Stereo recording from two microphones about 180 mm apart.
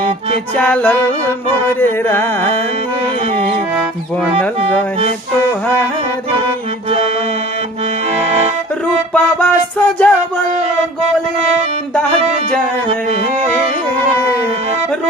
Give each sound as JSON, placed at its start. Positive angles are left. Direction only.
{"t": 0.6, "sound": "music", "side_deg": 10}
{"t": 8.2, "sound": "accordion", "side_deg": -35}
{"t": 9.1, "sound": "music", "side_deg": 5}
{"t": 12.9, "sound": "music", "side_deg": -35}